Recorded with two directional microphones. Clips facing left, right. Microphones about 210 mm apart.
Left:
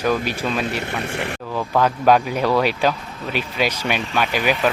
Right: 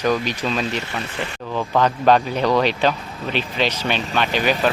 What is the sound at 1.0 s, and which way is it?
Speech, 60° left (ahead or behind).